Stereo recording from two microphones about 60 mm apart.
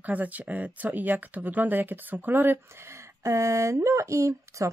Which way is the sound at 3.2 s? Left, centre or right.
Right.